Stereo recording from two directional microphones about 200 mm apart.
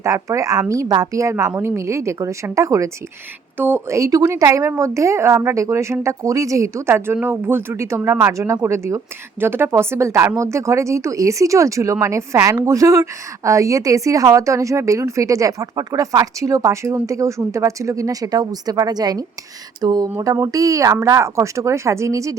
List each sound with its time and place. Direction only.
0.0 s speech: 15° right (ahead or behind)
19.8 s a sound: 20° right (ahead or behind)
20.1 s speech: 15° right (ahead or behind)